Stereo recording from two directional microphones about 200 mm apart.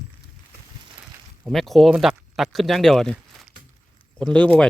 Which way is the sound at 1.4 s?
Centre (ahead or behind).